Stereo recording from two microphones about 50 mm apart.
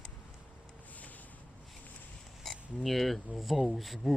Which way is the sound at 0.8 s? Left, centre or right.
Left.